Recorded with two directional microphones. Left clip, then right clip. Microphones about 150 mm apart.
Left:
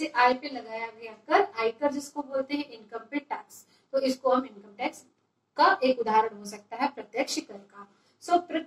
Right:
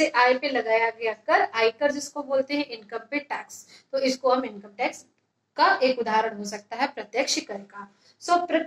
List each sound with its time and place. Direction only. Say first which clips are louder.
0.2 s a woman's voice: left 1 dB; 30° right (ahead or behind)